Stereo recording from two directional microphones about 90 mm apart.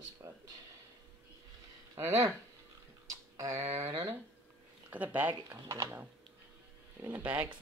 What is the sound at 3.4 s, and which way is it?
Speech, 35° right (ahead or behind).